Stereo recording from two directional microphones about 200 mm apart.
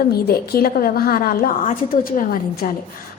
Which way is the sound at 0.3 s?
50° left (ahead or behind).